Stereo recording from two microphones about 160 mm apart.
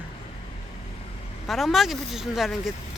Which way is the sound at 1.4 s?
Centre (ahead or behind).